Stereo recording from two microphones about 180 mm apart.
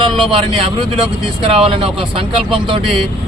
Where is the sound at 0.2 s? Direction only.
30° right (ahead or behind).